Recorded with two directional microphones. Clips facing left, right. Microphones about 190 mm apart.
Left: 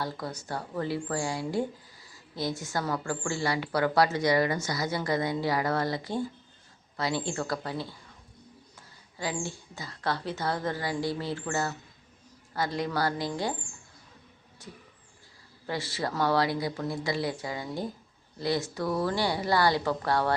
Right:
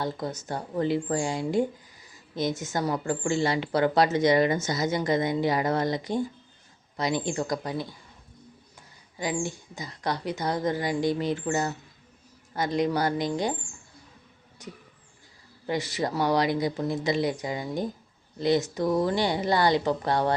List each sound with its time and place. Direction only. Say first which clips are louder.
0.0 s a woman's voice: right 4 dB; 20° right (ahead or behind)
9.1 s a woman's voice: right 4 dB; 15° right (ahead or behind)
14.6 s a woman's voice: right 4 dB; 15° right (ahead or behind)